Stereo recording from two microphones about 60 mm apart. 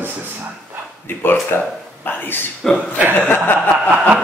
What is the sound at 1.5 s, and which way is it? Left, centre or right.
Speech, left.